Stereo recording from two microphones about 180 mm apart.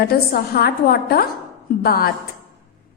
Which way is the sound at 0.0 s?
60° left (ahead or behind).